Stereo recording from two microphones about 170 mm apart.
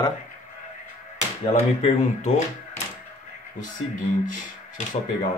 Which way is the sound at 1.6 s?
45° left (ahead or behind).